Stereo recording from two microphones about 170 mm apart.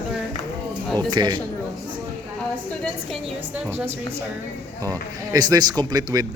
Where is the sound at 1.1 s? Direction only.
25° right (ahead or behind).